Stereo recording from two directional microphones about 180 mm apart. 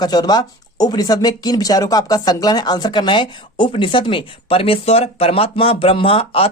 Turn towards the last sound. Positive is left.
turn(degrees=30)  # may be behind; listen again after turning